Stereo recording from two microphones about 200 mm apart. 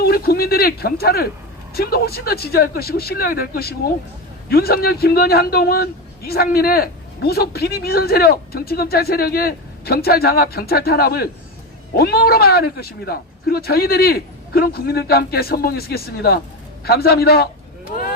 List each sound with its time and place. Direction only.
0.0 s a man's voice: 50° left (ahead or behind)